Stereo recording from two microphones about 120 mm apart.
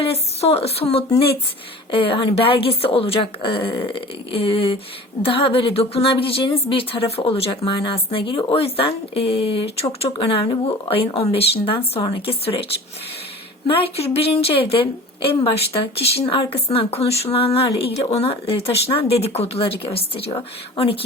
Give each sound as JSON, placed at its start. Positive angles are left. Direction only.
{"t": 0.0, "sound": "speech", "side_deg": 60}
{"t": 10.1, "sound": "speech", "side_deg": 40}